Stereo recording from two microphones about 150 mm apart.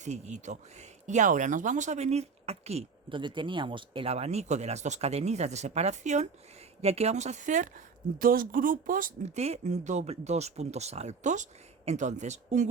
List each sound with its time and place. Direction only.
0.0 s speech: 50° right (ahead or behind)
8.2 s speech: 70° right (ahead or behind)
9.2 s speech: 45° right (ahead or behind)